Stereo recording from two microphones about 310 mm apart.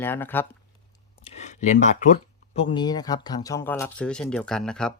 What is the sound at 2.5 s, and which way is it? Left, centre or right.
Speech, centre.